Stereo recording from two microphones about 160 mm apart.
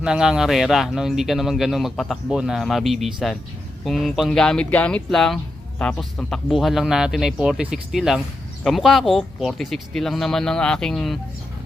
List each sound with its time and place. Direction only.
0.0 s speech: 5° right (ahead or behind)